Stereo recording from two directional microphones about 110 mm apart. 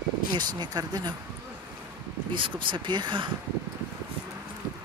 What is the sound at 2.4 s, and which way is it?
Speech, 50° right (ahead or behind).